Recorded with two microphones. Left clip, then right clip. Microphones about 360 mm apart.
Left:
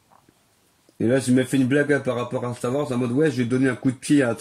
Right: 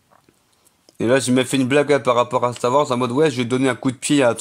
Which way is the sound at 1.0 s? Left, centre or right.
Right.